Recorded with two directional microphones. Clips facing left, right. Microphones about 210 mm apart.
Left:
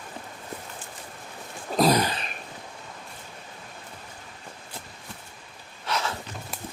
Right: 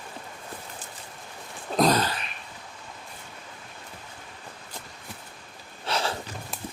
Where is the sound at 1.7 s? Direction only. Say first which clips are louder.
Left 1 dB; 10° left (ahead or behind).